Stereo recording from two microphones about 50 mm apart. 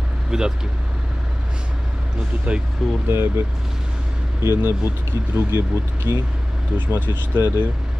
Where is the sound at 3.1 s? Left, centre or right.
Right.